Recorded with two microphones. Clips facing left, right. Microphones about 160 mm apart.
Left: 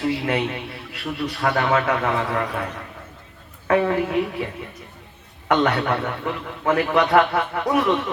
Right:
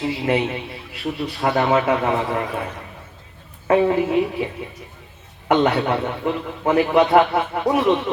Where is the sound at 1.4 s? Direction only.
20° right (ahead or behind).